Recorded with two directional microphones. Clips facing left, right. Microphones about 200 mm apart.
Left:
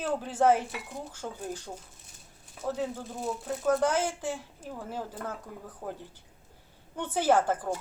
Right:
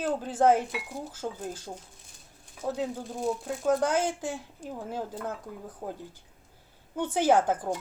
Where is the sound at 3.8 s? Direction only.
10° right (ahead or behind).